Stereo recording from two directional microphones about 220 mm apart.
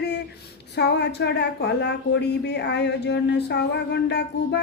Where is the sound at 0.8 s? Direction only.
50° left (ahead or behind).